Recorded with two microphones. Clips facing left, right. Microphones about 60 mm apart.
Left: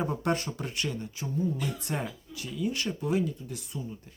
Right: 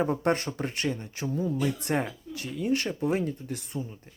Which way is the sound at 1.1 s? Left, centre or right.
Right.